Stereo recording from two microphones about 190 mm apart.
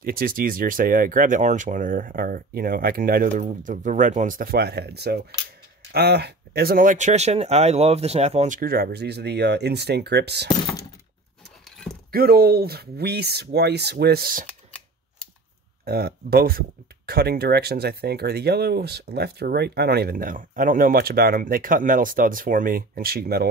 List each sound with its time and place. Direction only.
0.0 s speech: 50° right (ahead or behind); by 8.5 s 35° right (ahead or behind)
8.5 s speech: 50° right (ahead or behind)
12.1 s speech: 55° right (ahead or behind)
15.8 s speech: 55° right (ahead or behind)